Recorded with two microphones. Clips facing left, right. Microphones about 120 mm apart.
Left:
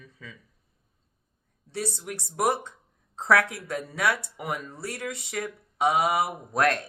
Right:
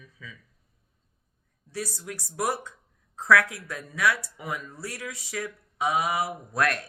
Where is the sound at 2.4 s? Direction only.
55° left (ahead or behind).